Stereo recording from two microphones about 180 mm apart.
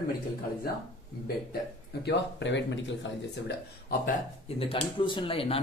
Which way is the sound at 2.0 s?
75° left (ahead or behind).